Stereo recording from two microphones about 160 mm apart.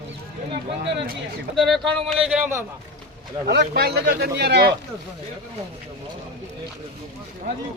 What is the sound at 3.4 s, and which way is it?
A man's voice, 90° right.